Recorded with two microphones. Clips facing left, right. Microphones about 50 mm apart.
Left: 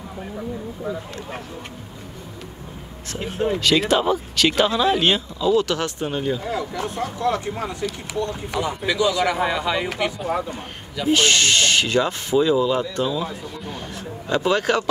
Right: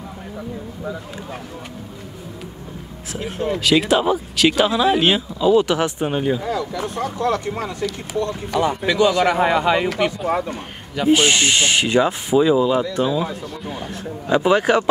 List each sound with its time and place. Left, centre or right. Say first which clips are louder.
3.5 s speech: right 3 dB; centre
5.4 s speech: right 5 dB; centre
6.5 s a sound: right 2 dB; left
7.0 s speech: right 2 dB; right
8.2 s speech: right 2 dB; left
8.5 s speech: right 5 dB; right
11.1 s speech: right 2 dB; centre